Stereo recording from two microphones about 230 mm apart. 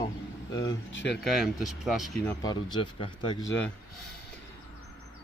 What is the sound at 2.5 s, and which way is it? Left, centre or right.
Speech, centre.